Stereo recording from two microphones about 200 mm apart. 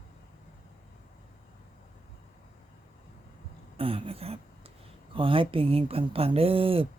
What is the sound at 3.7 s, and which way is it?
A woman's voice, 30° right (ahead or behind).